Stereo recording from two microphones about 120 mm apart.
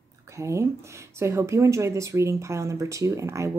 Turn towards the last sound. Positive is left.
turn(degrees=-25)  # may be behind; listen again after turning